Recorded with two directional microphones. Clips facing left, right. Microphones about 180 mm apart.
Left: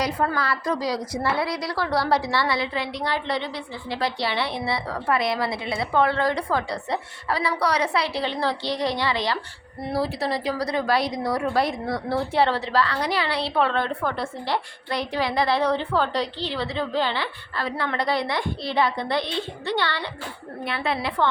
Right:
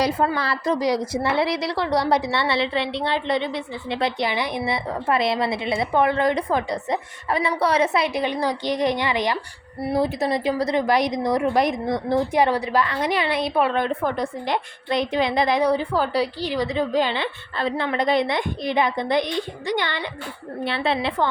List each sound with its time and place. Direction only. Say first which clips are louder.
0.3 s a woman's voice: right 2 dB; 25° right (ahead or behind)
20.7 s a woman's voice: right 3 dB; 25° right (ahead or behind)